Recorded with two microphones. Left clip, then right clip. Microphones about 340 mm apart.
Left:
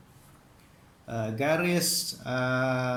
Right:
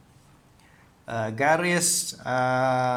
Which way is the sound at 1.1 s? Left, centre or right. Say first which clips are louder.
Right 5 dB; right.